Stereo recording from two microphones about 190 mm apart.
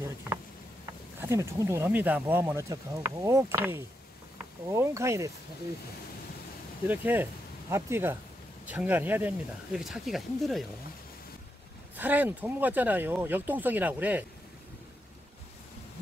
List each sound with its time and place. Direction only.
1.2 s speech: 15° right (ahead or behind)
6.9 s speech: 10° right (ahead or behind)
12.0 s speech: 10° right (ahead or behind)